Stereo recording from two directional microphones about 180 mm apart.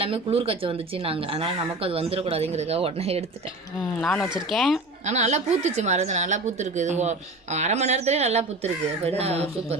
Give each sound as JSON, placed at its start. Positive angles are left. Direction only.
{"t": 0.0, "sound": "a woman's voice", "side_deg": -30}
{"t": 3.8, "sound": "speech", "side_deg": 5}
{"t": 5.0, "sound": "a woman's voice", "side_deg": -40}